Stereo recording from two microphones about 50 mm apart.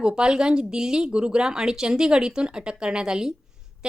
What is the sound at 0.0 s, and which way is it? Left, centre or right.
A woman's voice, centre.